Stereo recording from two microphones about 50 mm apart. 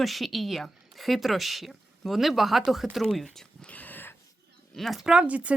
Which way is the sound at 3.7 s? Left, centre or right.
Left.